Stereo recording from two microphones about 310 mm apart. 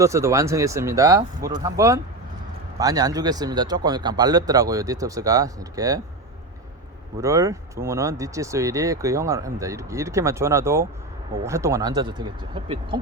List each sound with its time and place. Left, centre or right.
0.0 s speech: centre
7.2 s speech: centre